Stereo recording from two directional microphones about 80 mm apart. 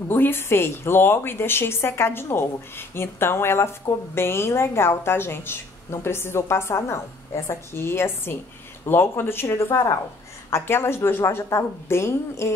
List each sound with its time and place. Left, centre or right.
0.1 s a woman's voice: left